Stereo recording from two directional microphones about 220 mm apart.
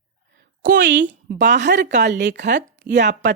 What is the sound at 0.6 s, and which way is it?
A woman's voice, 45° right (ahead or behind).